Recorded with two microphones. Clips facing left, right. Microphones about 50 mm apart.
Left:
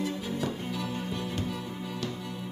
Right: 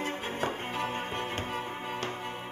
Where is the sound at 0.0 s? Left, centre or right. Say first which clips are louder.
Left 1 dB; right.